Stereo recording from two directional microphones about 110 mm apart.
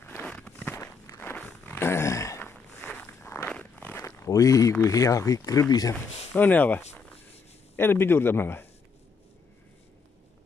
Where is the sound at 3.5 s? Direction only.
15° left (ahead or behind).